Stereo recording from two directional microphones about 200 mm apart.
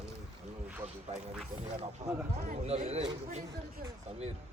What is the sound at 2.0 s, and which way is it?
Speech, 30° right (ahead or behind).